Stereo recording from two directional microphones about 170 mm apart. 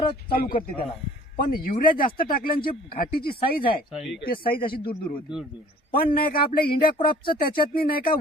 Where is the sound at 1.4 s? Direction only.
55° left (ahead or behind).